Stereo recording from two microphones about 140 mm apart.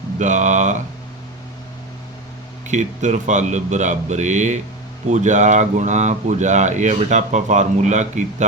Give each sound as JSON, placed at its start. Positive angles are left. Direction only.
{"t": 0.2, "sound": "speech", "side_deg": -60}
{"t": 2.6, "sound": "speech", "side_deg": -60}